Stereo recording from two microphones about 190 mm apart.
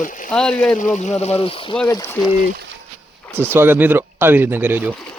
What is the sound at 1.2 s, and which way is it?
Speech, 30° left (ahead or behind).